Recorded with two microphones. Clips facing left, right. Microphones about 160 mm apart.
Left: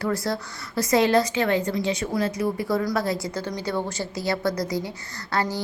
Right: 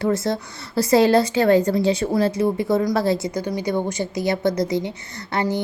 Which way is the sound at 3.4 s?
15° right (ahead or behind).